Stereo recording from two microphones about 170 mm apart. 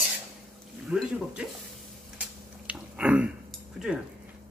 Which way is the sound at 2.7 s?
5° right (ahead or behind).